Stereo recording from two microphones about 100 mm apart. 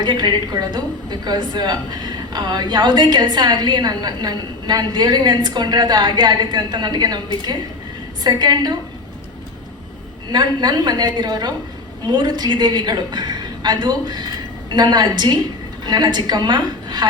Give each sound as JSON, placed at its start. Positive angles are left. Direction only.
{"t": 0.0, "sound": "a woman's voice", "side_deg": -45}
{"t": 10.3, "sound": "a woman's voice", "side_deg": -45}